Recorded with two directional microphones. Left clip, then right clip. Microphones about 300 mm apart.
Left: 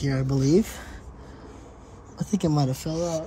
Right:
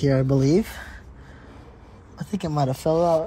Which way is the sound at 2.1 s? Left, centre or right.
Centre.